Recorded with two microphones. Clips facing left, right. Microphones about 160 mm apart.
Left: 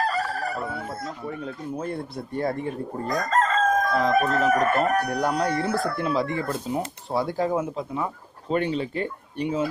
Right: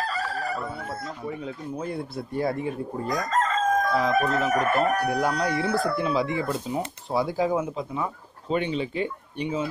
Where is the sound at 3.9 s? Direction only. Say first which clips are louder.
Left 1 dB; centre (ahead or behind).